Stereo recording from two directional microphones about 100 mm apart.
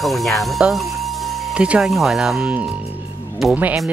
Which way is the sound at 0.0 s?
Centre (ahead or behind).